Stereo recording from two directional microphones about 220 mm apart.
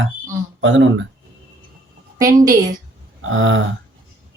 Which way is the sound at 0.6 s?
60° right (ahead or behind).